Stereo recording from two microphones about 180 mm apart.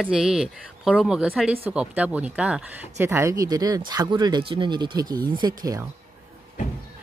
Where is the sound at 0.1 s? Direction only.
5° right (ahead or behind); by 5.9 s 20° right (ahead or behind).